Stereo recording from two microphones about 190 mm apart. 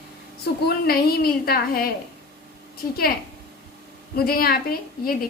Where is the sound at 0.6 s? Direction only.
55° left (ahead or behind).